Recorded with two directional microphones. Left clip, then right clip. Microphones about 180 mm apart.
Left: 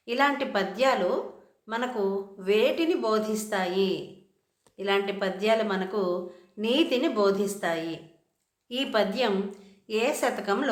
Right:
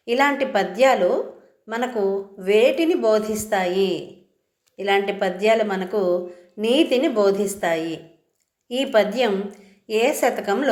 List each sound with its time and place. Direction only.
0.0 s a woman's voice: 15° right (ahead or behind)